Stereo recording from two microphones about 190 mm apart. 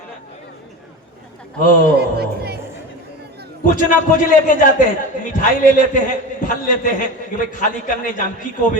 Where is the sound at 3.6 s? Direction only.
45° left (ahead or behind).